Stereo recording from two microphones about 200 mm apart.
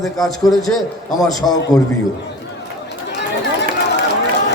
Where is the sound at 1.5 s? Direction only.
20° left (ahead or behind).